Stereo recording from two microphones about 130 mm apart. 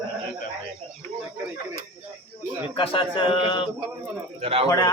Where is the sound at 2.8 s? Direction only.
40° left (ahead or behind).